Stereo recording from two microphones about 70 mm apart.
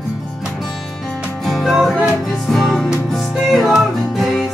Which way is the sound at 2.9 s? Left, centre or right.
Centre.